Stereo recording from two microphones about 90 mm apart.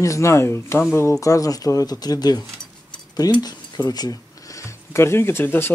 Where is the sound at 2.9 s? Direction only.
45° left (ahead or behind); by 5.7 s 25° left (ahead or behind).